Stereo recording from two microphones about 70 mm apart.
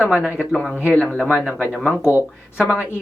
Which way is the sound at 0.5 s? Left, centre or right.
Centre.